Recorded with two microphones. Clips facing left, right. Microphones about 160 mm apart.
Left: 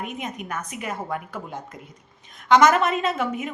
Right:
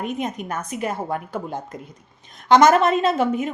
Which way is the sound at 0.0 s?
35° right (ahead or behind).